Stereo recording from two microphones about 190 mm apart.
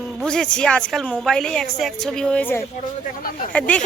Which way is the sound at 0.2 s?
5° left (ahead or behind).